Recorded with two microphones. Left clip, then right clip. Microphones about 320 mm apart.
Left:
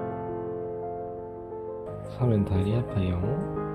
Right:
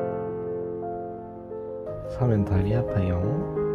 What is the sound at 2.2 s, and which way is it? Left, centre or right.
Speech, centre.